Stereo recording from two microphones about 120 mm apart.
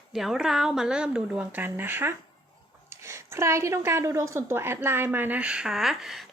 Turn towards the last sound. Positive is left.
turn(degrees=0)  # may be behind; listen again after turning